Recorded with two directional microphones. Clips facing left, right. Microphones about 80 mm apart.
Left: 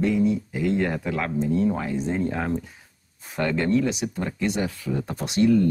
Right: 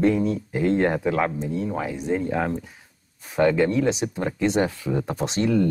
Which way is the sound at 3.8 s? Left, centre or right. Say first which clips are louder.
Right 1 dB; right.